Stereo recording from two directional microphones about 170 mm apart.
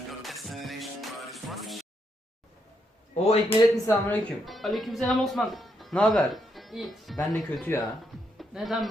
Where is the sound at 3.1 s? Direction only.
40° left (ahead or behind).